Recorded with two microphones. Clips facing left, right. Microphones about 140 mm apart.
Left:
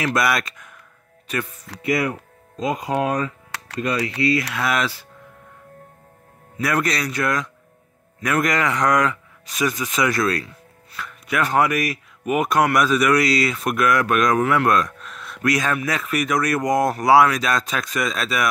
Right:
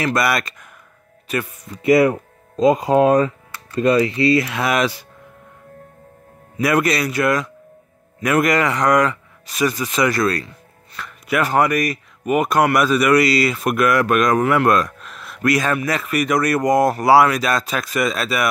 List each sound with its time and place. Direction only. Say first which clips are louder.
0.0 s speech: right 2 dB; centre (ahead or behind)
1.8 s speech: right 8 dB; 30° right (ahead or behind)
3.5 s music: right 4 dB; 75° left (ahead or behind)
4.2 s speech: right 4 dB; 30° right (ahead or behind)
4.6 s speech: right 4 dB; 20° right (ahead or behind)
6.5 s speech: right 5 dB; 10° right (ahead or behind)